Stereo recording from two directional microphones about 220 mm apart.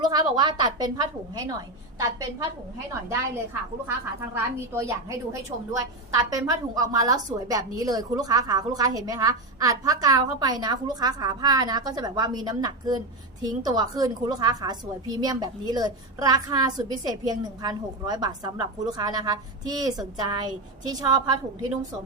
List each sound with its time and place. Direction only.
0.0 s a woman's voice: 20° right (ahead or behind)
4.4 s a woman's voice: 10° right (ahead or behind)